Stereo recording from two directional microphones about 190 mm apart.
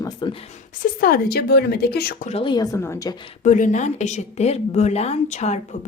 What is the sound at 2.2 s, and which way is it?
Speech, 30° left (ahead or behind).